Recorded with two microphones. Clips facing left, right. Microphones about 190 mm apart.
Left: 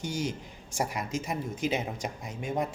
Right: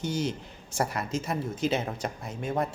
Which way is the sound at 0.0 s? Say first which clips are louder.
Right 3 dB; 10° left (ahead or behind).